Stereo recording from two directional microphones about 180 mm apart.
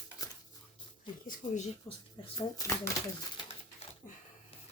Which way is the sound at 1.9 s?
15° left (ahead or behind).